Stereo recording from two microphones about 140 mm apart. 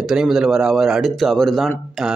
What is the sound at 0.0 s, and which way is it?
Speech, centre (ahead or behind).